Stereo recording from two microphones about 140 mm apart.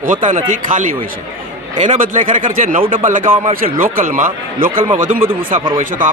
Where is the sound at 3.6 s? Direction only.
85° right.